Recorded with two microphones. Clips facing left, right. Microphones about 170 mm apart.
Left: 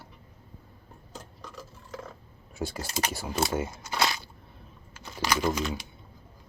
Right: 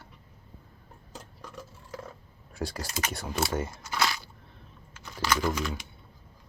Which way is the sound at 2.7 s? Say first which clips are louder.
Left 2 dB; 30° left (ahead or behind).